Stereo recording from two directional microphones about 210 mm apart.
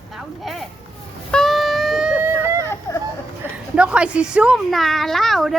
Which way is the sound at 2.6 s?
10° left (ahead or behind).